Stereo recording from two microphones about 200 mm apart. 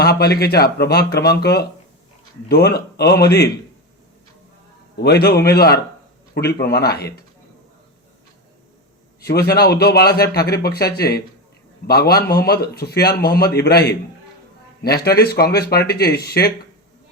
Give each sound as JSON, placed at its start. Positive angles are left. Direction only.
{"t": 0.0, "sound": "a man's voice", "side_deg": 55}
{"t": 4.9, "sound": "a man's voice", "side_deg": 55}
{"t": 9.2, "sound": "a man's voice", "side_deg": 50}